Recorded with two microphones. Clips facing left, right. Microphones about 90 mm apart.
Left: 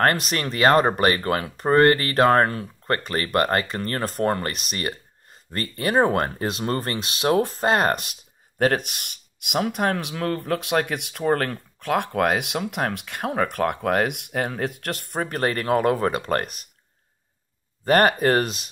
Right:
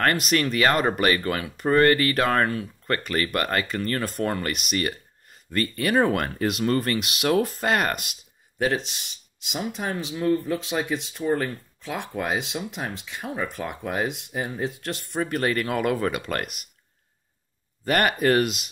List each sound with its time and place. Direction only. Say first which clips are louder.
0.0 s speech: left 1 dB; 35° left (ahead or behind)
17.8 s speech: left 3 dB; 35° left (ahead or behind)